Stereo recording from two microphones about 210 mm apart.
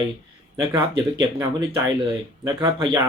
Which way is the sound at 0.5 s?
15° right (ahead or behind).